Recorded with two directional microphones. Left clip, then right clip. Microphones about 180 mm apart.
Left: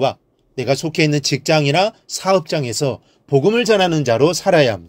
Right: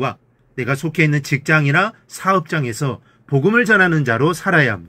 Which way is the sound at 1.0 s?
35° left (ahead or behind).